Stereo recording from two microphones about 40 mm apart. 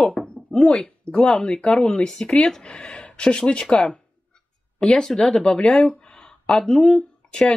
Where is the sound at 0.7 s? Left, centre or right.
Left.